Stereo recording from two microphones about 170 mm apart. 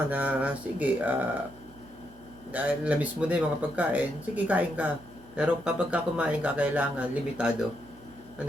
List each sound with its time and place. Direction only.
0.1 s speech: 10° right (ahead or behind)
2.5 s speech: 10° right (ahead or behind)